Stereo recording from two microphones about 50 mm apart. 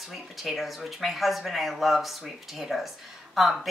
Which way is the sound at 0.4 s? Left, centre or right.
Centre.